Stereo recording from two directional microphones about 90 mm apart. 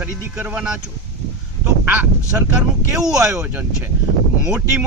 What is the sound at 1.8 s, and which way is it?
Speech, 20° right (ahead or behind).